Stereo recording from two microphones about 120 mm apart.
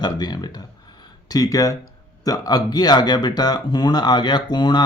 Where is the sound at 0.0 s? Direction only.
35° left (ahead or behind).